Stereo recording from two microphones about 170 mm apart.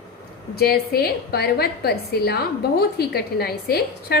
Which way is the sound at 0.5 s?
65° left (ahead or behind).